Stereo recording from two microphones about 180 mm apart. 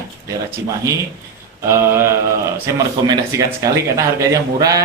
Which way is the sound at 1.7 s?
15° right (ahead or behind).